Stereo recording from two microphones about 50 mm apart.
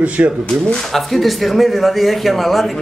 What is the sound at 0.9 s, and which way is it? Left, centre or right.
A man's voice, centre.